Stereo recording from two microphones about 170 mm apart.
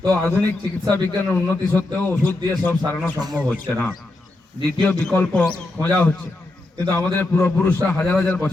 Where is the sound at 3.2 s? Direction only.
25° right (ahead or behind).